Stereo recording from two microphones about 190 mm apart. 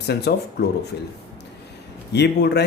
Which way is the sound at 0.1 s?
60° left (ahead or behind).